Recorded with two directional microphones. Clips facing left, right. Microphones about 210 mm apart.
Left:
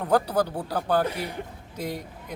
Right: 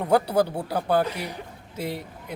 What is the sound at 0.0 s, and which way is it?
Speech, 10° right (ahead or behind).